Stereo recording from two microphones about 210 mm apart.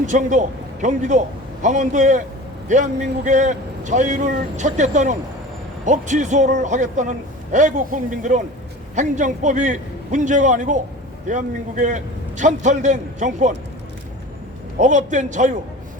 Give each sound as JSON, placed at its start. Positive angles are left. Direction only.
{"t": 0.0, "sound": "a man's voice", "side_deg": -35}
{"t": 14.8, "sound": "a man's voice", "side_deg": -35}